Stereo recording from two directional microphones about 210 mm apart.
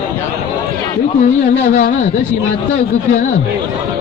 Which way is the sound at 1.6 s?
40° left (ahead or behind).